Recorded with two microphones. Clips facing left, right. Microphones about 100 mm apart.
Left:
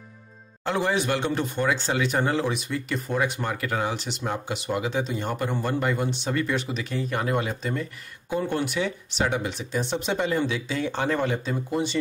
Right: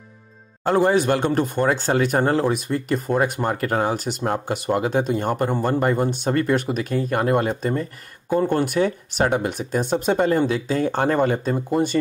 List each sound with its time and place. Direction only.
0.7 s speech: 45° right (ahead or behind)